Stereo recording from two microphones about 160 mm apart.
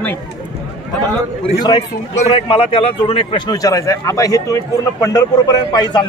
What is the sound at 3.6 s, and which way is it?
Speech, 20° left (ahead or behind).